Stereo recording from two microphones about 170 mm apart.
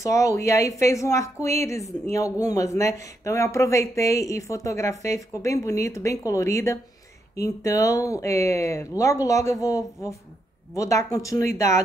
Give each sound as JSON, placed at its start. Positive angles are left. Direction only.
{"t": 0.0, "sound": "speech", "side_deg": 20}